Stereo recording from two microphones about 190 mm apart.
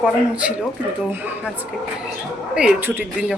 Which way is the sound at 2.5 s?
5° right (ahead or behind).